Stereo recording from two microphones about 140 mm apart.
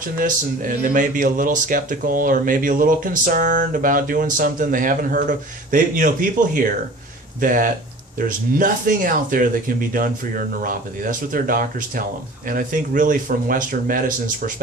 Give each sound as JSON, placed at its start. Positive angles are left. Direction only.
{"t": 0.2, "sound": "speech", "side_deg": -80}